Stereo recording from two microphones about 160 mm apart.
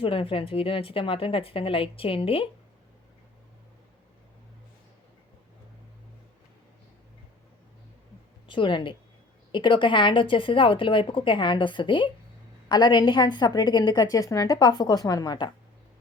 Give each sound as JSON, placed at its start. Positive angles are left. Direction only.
{"t": 0.0, "sound": "speech", "side_deg": 35}
{"t": 8.4, "sound": "a woman's voice", "side_deg": 30}